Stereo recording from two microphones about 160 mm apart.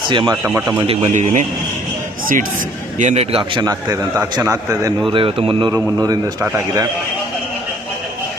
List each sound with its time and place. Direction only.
0.1 s a man's voice: 30° right (ahead or behind)
0.4 s a man's voice: 15° right (ahead or behind)
0.8 s a man's voice: 40° right (ahead or behind)
3.0 s a man's voice: 45° right (ahead or behind)
3.6 s a man's voice: 20° right (ahead or behind)
5.1 s a man's voice: 35° right (ahead or behind)
6.4 s a man's voice: 10° right (ahead or behind)